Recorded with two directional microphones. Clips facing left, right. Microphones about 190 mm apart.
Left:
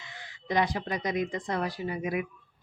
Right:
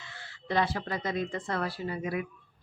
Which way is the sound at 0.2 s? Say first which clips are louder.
Left 1 dB; 15° left (ahead or behind).